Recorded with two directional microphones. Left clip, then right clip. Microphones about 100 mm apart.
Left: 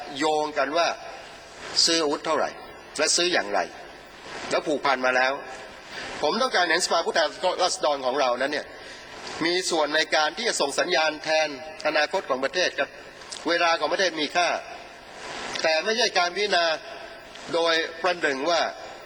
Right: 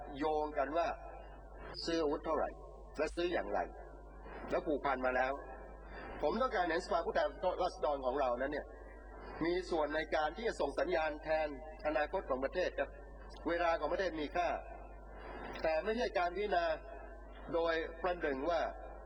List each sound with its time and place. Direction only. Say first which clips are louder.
0.5 s a man's voice: left 12 dB; 15° left (ahead or behind)
1.9 s a man's voice: left 6 dB; 10° left (ahead or behind)
2.2 s a man's voice: left 11 dB; 25° left (ahead or behind)
3.0 s a man's voice: left 14 dB; 10° left (ahead or behind)
15.4 s a sound: left 12 dB; 10° left (ahead or behind)
16.2 s a man's voice: left 12 dB; 15° left (ahead or behind)